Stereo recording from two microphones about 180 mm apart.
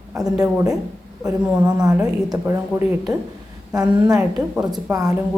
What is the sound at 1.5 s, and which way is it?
Speech, 20° right (ahead or behind).